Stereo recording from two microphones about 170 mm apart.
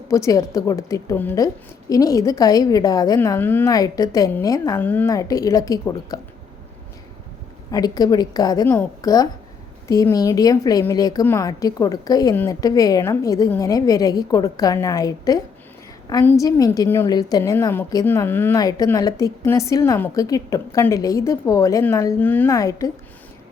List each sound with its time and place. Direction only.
0.1 s a woman's voice: 20° left (ahead or behind)
7.7 s a woman's voice: 20° left (ahead or behind)